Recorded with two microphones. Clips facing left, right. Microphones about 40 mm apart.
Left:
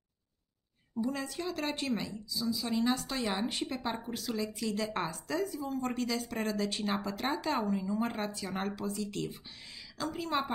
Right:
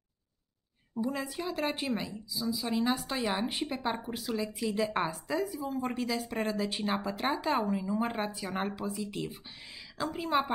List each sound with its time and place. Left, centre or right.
1.0 s speech: centre